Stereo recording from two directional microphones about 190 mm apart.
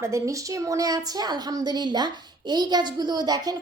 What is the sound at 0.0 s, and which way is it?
A woman's voice, 15° right (ahead or behind).